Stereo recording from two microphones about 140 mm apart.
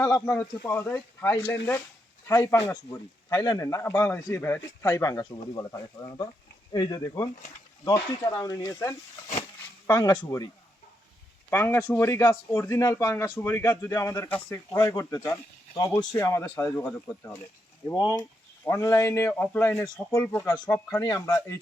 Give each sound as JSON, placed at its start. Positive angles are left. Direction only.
{"t": 0.3, "sound": "speech", "side_deg": 15}
{"t": 11.5, "sound": "speech", "side_deg": 15}
{"t": 17.9, "sound": "speech", "side_deg": 25}
{"t": 20.9, "sound": "speech", "side_deg": 25}